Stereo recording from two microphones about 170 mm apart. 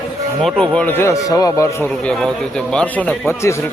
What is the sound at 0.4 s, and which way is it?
A man's voice, 5° left (ahead or behind).